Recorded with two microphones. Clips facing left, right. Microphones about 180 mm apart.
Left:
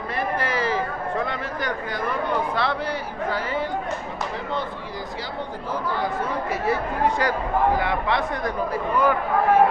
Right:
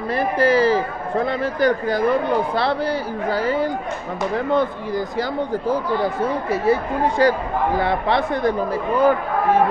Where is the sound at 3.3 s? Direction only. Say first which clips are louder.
Right 7 dB; 35° right (ahead or behind).